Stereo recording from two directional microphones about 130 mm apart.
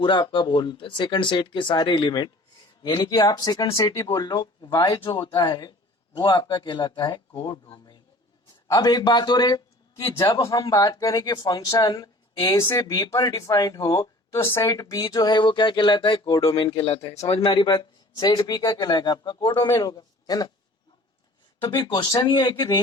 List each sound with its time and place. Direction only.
0.0 s speech: 40° left (ahead or behind)
17.5 s a man's voice: 35° left (ahead or behind)
21.6 s speech: 35° left (ahead or behind)